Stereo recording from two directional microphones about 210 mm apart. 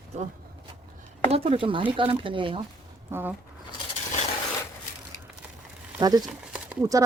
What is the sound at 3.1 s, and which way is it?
Speech, 10° right (ahead or behind).